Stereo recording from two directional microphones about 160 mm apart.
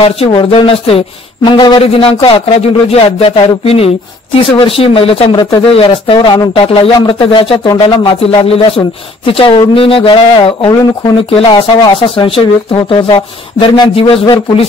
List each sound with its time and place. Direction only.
0.0 s speech: 35° left (ahead or behind)